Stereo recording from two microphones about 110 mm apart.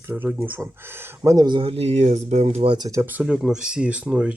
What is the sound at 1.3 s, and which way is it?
Speech, 45° right (ahead or behind).